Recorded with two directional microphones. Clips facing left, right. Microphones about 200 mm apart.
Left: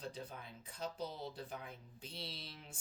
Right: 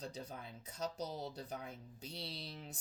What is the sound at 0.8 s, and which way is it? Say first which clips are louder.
Speech: right 2 dB; 40° right (ahead or behind).